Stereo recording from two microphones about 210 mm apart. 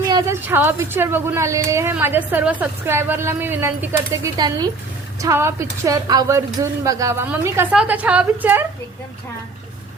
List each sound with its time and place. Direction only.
0.1 s a woman's voice: 10° right (ahead or behind)